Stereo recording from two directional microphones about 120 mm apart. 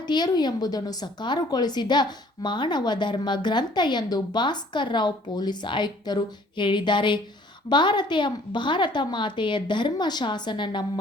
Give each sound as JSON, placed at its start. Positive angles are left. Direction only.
{"t": 0.0, "sound": "a woman's voice", "side_deg": 35}